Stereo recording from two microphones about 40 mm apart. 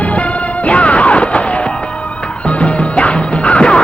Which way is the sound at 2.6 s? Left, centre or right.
Left.